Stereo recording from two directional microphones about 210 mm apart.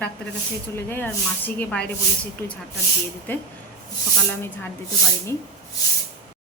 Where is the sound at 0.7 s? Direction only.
10° left (ahead or behind).